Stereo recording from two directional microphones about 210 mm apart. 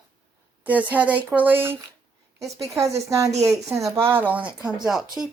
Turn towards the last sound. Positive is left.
turn(degrees=0)  # may be behind; listen again after turning